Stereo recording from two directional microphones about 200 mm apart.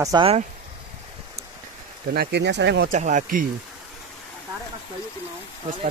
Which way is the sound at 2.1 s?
60° right (ahead or behind).